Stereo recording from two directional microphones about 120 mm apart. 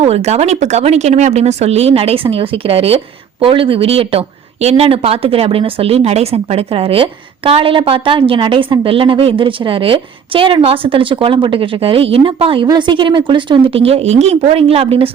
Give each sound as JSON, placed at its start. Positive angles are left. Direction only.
{"t": 0.0, "sound": "speech", "side_deg": -60}